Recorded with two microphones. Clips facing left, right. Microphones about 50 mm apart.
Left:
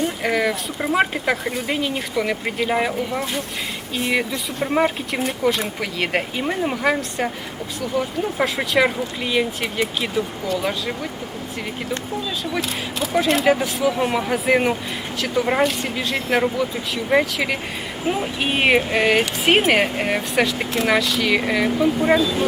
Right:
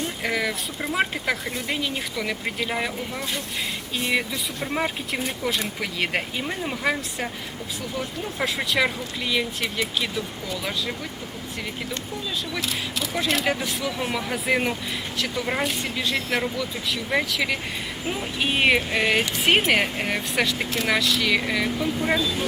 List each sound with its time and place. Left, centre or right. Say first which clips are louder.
0.2 s speech: left 5 dB; centre
12.5 s speech: left 5 dB; left
13.4 s speech: left 7 dB; centre
13.9 s speech: left 6 dB; centre
14.3 s speech: left 4 dB; centre